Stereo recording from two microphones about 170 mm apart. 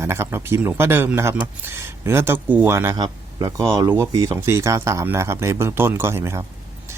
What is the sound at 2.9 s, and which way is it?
Speech, 25° right (ahead or behind).